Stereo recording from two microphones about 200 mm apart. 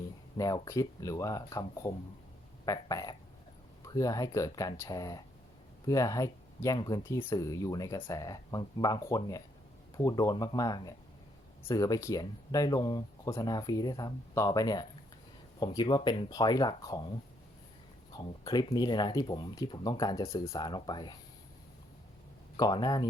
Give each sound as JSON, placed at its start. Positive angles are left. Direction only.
{"t": 0.3, "sound": "speech", "side_deg": 15}
{"t": 18.1, "sound": "speech", "side_deg": 20}
{"t": 22.5, "sound": "speech", "side_deg": 20}